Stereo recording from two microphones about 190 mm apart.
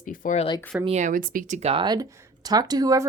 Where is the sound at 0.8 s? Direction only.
35° right (ahead or behind).